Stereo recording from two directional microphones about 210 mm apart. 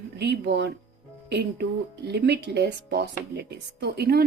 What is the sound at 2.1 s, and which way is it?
Speech, 50° right (ahead or behind).